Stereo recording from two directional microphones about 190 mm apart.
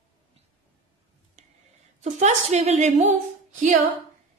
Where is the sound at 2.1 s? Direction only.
35° right (ahead or behind).